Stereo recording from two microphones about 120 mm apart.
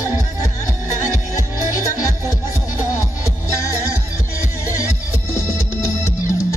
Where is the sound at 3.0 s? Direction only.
25° left (ahead or behind).